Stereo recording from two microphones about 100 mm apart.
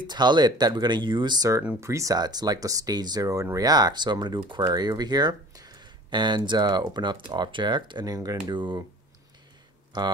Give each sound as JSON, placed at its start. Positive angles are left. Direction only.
{"t": 0.0, "sound": "speech", "side_deg": -45}
{"t": 1.8, "sound": "speech", "side_deg": -30}